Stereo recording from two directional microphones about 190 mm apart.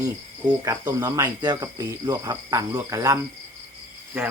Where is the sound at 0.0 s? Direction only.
20° right (ahead or behind).